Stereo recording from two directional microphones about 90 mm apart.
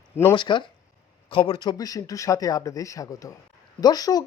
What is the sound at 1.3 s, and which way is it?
Speech, 80° left.